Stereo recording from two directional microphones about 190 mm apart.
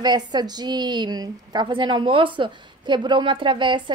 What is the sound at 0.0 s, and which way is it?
A woman's voice, 20° right (ahead or behind).